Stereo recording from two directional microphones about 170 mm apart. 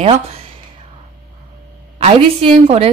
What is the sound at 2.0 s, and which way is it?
Speech, 35° right (ahead or behind).